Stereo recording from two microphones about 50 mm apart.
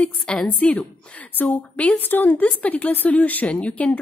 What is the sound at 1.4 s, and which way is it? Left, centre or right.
Speech, left.